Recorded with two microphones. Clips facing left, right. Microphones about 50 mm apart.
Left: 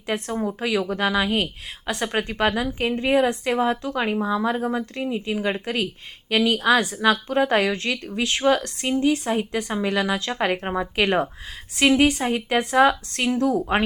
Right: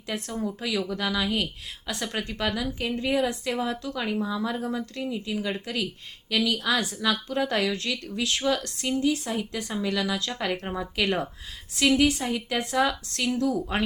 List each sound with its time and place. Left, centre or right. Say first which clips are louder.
0.1 s speech: left 5 dB; left